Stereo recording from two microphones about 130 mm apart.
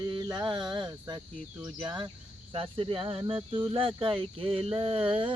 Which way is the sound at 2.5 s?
40° right (ahead or behind).